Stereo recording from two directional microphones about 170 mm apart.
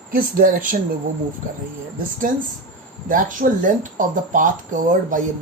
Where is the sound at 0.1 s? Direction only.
55° right (ahead or behind).